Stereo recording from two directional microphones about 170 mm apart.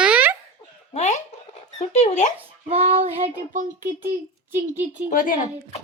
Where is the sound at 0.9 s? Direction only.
45° left (ahead or behind).